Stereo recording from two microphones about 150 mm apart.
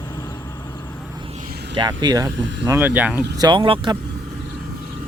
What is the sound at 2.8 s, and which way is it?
Speech, 10° right (ahead or behind).